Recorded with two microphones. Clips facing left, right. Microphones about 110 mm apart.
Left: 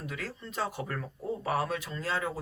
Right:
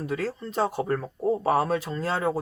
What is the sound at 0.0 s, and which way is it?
Speech, 35° right (ahead or behind).